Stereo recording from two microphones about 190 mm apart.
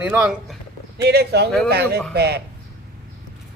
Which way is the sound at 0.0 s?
5° right (ahead or behind).